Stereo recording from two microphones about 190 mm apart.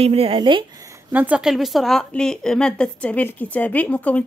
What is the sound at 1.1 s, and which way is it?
A woman's voice, 5° right (ahead or behind).